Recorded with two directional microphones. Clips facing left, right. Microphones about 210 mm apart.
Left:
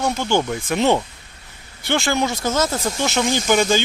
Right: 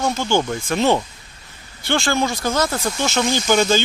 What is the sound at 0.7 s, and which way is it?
Speech, 15° left (ahead or behind).